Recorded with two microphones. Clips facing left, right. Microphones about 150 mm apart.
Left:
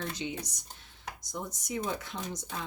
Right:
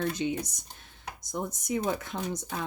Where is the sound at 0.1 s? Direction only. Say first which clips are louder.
Right 6 dB; 50° right (ahead or behind).